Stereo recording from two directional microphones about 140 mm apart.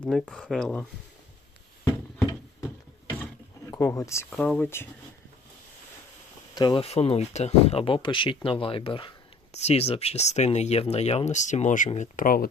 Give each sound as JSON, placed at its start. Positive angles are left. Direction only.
{"t": 0.0, "sound": "speech", "side_deg": 0}
{"t": 3.7, "sound": "speech", "side_deg": 25}
{"t": 4.4, "sound": "speech", "side_deg": 10}
{"t": 6.5, "sound": "speech", "side_deg": 30}
{"t": 6.8, "sound": "speech", "side_deg": 45}
{"t": 9.5, "sound": "speech", "side_deg": 50}